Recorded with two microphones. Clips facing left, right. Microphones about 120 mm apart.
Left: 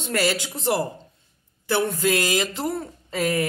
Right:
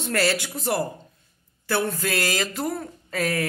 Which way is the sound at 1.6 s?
20° left (ahead or behind).